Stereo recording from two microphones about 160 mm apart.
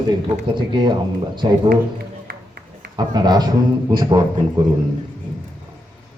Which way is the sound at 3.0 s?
25° right (ahead or behind).